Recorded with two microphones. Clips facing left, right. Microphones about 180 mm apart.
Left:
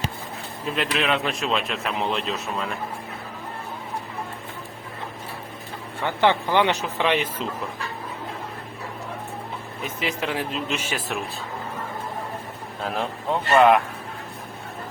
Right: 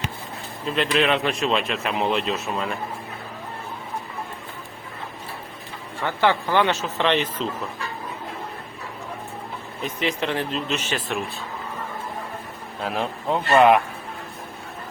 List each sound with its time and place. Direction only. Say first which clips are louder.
0.8 s a man's voice: right 3 dB; 5° left (ahead or behind)
6.0 s speech: left 1 dB; 20° left (ahead or behind)
9.8 s speech: right 3 dB; 5° left (ahead or behind)
12.8 s a man's voice: right 1 dB; centre (ahead or behind)